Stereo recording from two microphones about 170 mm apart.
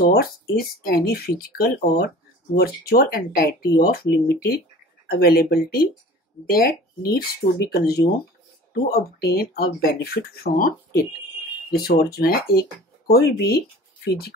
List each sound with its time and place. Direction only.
0.0 s speech: 65° left (ahead or behind)